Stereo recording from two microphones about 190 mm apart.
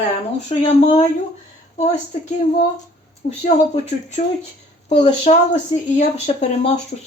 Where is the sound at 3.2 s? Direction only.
35° left (ahead or behind).